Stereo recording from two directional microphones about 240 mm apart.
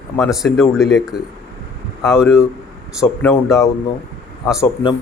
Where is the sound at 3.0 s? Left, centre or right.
Centre.